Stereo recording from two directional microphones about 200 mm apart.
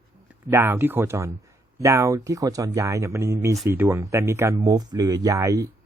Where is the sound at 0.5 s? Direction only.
10° right (ahead or behind).